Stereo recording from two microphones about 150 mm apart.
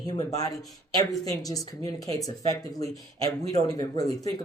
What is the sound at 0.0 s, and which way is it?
Speech, 30° left (ahead or behind).